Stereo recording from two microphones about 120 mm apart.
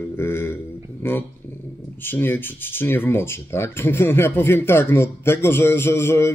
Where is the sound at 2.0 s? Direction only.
15° left (ahead or behind).